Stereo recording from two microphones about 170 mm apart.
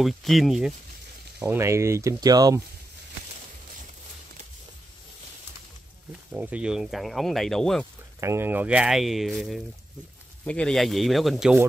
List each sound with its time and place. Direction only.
0.0 s speech: centre (ahead or behind)
1.4 s speech: 15° right (ahead or behind)
6.3 s speech: 10° right (ahead or behind)
8.2 s speech: 15° right (ahead or behind)